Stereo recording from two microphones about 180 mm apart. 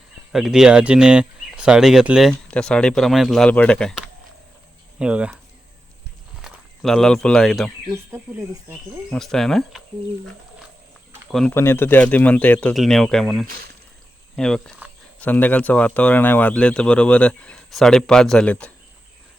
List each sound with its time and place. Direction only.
0.3 s speech: 5° right (ahead or behind)
6.4 s speech: centre (ahead or behind)
7.9 s speech: 15° right (ahead or behind)
9.0 s speech: centre (ahead or behind)
11.3 s speech: centre (ahead or behind)
11.5 s speech: 15° left (ahead or behind)